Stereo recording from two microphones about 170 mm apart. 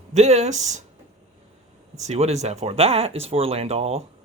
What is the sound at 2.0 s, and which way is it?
Speech, 40° right (ahead or behind).